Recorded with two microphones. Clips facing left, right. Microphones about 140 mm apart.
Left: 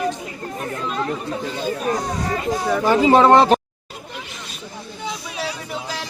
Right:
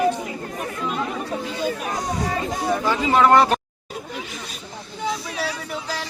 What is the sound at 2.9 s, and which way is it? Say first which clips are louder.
Speech: left 4 dB; 30° left (ahead or behind).